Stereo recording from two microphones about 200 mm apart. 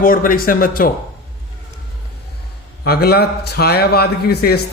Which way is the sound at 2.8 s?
55° left (ahead or behind).